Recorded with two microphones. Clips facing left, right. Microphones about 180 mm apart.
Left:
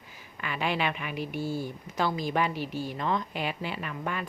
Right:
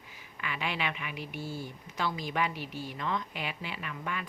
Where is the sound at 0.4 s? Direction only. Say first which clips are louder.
Left 5 dB; 40° left (ahead or behind).